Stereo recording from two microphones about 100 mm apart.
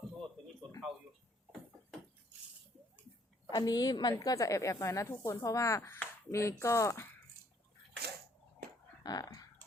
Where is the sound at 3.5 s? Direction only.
40° left (ahead or behind).